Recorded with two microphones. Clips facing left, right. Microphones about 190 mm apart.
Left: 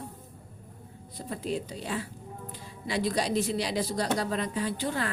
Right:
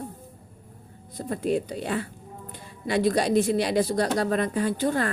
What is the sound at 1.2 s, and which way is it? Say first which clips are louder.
A woman's voice: right 7 dB; 55° right (ahead or behind).